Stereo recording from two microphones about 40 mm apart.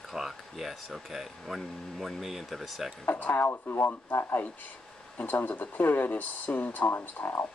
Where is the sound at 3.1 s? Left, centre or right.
Left.